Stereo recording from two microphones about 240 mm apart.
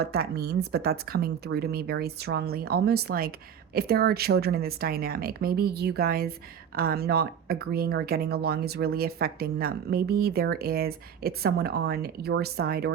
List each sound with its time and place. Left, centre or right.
0.0 s speech: right